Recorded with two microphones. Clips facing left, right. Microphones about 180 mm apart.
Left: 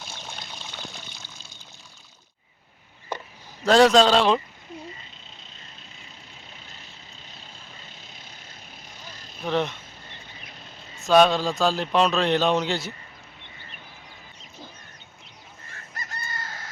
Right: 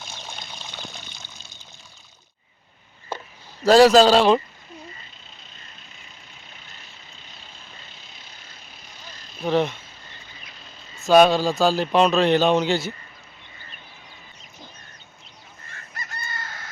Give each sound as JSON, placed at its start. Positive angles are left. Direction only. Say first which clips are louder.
{"t": 0.0, "sound": "water", "louder": "right 1 dB", "side_deg": 10}
{"t": 3.6, "sound": "speech", "louder": "right 3 dB", "side_deg": -5}
{"t": 9.4, "sound": "speech", "louder": "right 4 dB", "side_deg": -5}
{"t": 11.0, "sound": "speech", "louder": "right 3 dB", "side_deg": -5}
{"t": 16.0, "sound": "chicken", "louder": "right 1 dB", "side_deg": 35}